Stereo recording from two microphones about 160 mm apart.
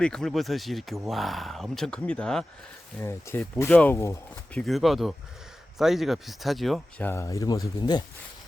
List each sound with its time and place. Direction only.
0.0 s speech: 5° left (ahead or behind)
3.0 s speech: 15° left (ahead or behind)
4.6 s speech: centre (ahead or behind)
7.0 s speech: 15° left (ahead or behind)